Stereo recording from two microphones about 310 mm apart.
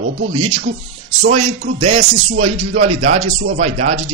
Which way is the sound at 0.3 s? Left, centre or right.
Centre.